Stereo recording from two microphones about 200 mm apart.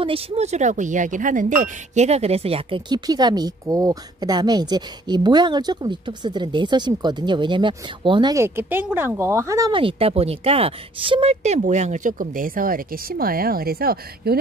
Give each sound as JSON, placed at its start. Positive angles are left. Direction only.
{"t": 0.0, "sound": "speech", "side_deg": -30}